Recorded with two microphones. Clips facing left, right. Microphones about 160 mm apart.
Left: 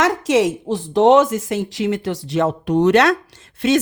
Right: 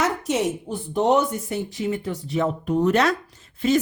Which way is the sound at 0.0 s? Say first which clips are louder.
Left 6 dB; 90° left.